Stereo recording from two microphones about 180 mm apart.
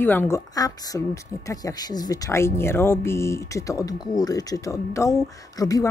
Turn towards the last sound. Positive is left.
turn(degrees=20)  # may be behind; listen again after turning